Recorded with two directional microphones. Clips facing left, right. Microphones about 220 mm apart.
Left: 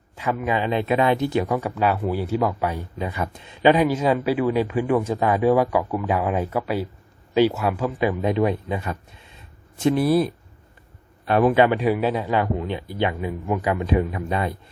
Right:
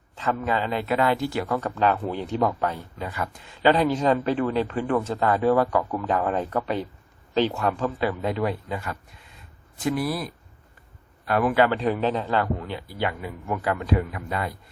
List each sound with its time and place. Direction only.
0.2 s speech: 10° left (ahead or behind)